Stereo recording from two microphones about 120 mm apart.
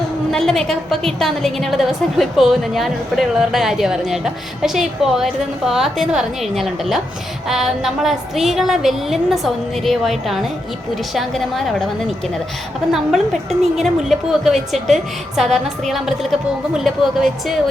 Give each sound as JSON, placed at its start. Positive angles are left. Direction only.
{"t": 0.3, "sound": "a woman's voice", "side_deg": 5}
{"t": 12.9, "sound": "a woman's voice", "side_deg": 0}